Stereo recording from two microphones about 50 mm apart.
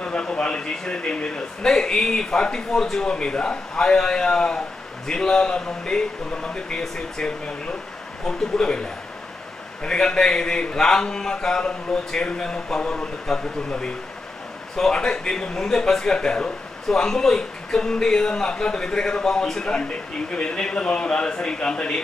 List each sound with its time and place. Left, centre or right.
0.0 s a man's voice: left